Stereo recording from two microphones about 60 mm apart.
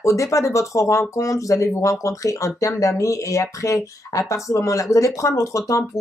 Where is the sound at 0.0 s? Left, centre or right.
Left.